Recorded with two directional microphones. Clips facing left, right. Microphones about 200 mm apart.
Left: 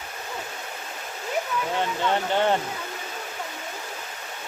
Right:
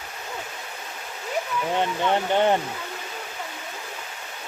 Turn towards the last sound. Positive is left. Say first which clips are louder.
# right 2 dB
turn(degrees=-15)  # may be behind; listen again after turning